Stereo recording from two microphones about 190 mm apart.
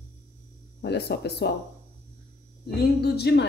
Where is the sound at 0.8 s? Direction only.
60° left (ahead or behind).